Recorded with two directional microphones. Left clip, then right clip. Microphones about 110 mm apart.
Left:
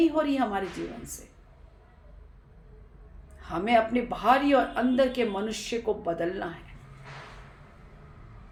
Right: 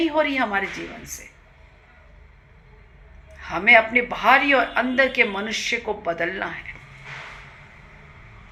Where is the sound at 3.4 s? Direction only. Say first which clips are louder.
Right 9 dB; 35° left (ahead or behind).